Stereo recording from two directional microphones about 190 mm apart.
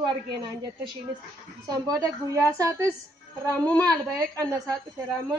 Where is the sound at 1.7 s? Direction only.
20° right (ahead or behind).